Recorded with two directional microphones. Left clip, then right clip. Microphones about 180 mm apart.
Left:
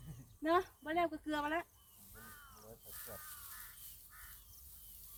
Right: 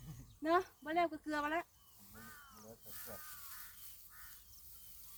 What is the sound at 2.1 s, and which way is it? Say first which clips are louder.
Crow: even; 60° right (ahead or behind).